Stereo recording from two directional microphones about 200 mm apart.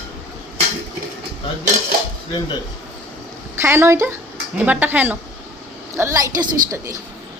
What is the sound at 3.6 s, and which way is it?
Speech, 10° right (ahead or behind).